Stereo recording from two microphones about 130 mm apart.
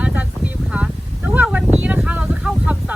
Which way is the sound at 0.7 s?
10° right (ahead or behind).